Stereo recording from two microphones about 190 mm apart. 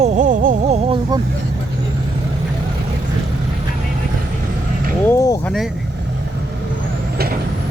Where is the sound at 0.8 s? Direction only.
30° right (ahead or behind).